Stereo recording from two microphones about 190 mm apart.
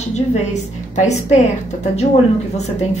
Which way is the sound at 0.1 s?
35° left (ahead or behind).